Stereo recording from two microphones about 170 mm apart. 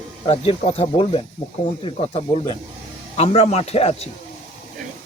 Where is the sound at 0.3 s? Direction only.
35° left (ahead or behind).